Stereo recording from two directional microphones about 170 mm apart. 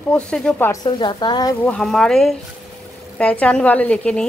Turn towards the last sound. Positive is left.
turn(degrees=5)  # may be behind; listen again after turning